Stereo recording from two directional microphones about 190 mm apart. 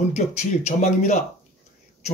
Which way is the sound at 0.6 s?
35° left (ahead or behind).